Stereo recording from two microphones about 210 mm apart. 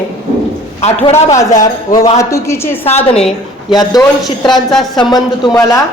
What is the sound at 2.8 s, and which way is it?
Speech, 30° left (ahead or behind).